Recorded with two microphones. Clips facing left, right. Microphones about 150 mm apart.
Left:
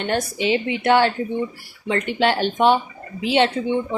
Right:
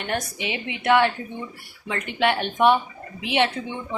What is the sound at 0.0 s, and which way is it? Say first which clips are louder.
Speech: left 6 dB; 30° left (ahead or behind).